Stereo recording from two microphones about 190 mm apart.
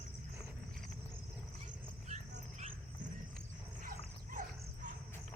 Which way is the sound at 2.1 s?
40° right (ahead or behind).